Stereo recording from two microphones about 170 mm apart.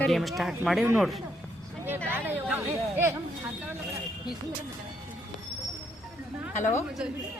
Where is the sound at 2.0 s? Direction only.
10° right (ahead or behind).